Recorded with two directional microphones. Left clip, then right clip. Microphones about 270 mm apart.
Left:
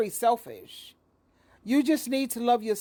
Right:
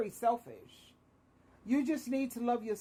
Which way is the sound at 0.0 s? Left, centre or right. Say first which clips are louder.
Left 8 dB; left.